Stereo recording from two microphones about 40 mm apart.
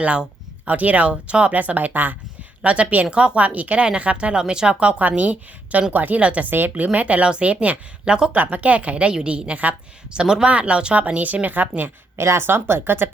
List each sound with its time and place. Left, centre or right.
0.0 s a sound: right
0.8 s a woman's voice: right
1.1 s speech: right
1.5 s speech: right
2.6 s speech: right
3.4 s a woman's voice: right
3.8 s speech: right
4.9 s a woman's voice: right
6.2 s a woman's voice: right
6.5 s a woman's voice: right
8.0 s speech: centre
8.3 s a woman's voice: right
10.9 s a woman's voice: right
12.1 s speech: right